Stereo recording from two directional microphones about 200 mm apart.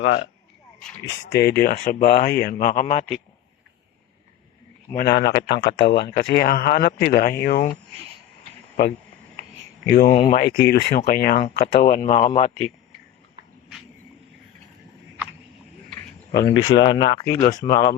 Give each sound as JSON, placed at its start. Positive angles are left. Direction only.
{"t": 1.3, "sound": "speech", "side_deg": 55}
{"t": 4.9, "sound": "speech", "side_deg": 50}
{"t": 7.4, "sound": "a man's voice", "side_deg": 35}
{"t": 9.9, "sound": "speech", "side_deg": 50}
{"t": 11.9, "sound": "a man's voice", "side_deg": 30}
{"t": 16.5, "sound": "speech", "side_deg": 20}